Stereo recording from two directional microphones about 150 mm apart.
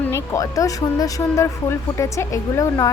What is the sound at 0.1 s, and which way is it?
A woman's voice, 20° left (ahead or behind).